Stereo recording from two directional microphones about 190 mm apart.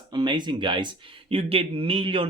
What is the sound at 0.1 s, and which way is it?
Speech, 25° right (ahead or behind).